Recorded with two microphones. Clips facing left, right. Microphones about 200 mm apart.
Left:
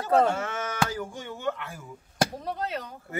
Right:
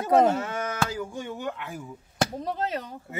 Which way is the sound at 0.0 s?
20° right (ahead or behind).